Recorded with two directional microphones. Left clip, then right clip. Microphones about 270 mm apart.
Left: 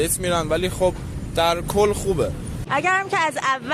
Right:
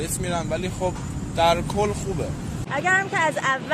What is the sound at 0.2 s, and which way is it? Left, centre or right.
Speech, left.